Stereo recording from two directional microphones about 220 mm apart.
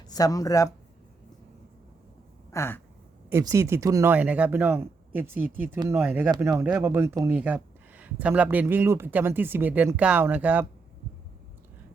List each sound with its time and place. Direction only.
0.1 s speech: 15° left (ahead or behind)
2.5 s a sound: 10° left (ahead or behind)
3.2 s speech: 10° right (ahead or behind)